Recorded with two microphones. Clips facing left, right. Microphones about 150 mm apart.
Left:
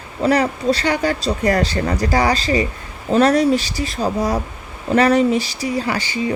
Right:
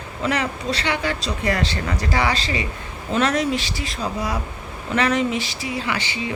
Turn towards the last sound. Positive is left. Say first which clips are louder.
# left 5 dB
turn(degrees=40)  # may be behind; listen again after turning